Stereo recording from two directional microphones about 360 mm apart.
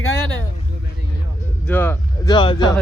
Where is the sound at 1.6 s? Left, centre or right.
Centre.